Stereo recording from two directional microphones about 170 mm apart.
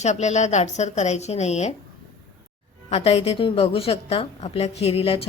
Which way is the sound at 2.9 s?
35° left (ahead or behind).